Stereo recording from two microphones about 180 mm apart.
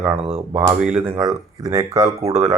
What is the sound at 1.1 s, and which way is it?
Speech, 20° right (ahead or behind).